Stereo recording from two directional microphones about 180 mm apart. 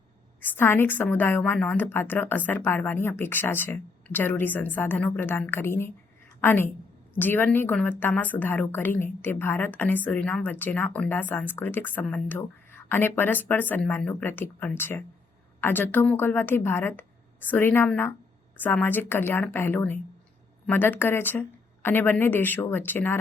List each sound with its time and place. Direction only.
0.4 s a woman's voice: 10° left (ahead or behind)